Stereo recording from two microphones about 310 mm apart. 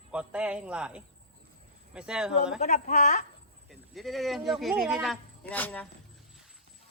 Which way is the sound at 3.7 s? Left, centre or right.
Centre.